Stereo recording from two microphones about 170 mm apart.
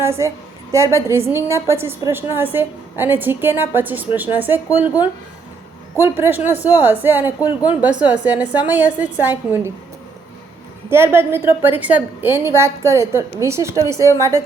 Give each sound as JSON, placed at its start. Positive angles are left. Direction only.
{"t": 0.0, "sound": "a woman's voice", "side_deg": -15}
{"t": 10.8, "sound": "a woman's voice", "side_deg": -15}